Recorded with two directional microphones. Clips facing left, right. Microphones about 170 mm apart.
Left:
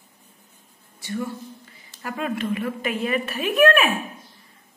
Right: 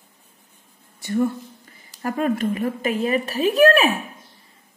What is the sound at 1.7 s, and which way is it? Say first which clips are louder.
A woman's voice: right 6 dB; 45° right (ahead or behind).